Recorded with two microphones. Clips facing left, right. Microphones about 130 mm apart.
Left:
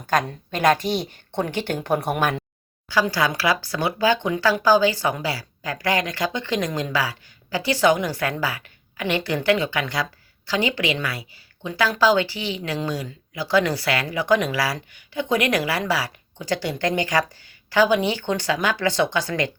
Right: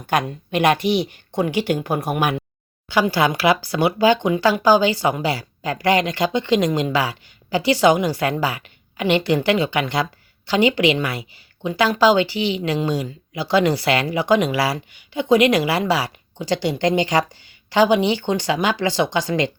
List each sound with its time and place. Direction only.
0.1 s speech: 10° right (ahead or behind)
2.9 s speech: 20° right (ahead or behind)